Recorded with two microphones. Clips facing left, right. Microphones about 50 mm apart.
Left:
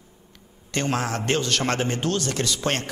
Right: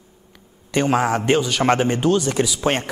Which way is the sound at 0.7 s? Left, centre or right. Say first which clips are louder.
Right 7 dB; centre.